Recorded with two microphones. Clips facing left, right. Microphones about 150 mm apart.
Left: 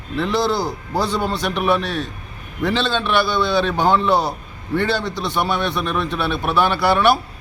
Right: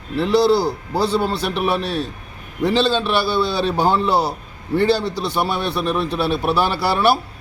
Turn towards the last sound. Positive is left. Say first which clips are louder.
# left 1 dB
turn(degrees=-35)  # may be behind; listen again after turning